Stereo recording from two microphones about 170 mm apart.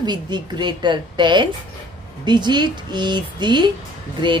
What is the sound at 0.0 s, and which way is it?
Speech, 25° right (ahead or behind).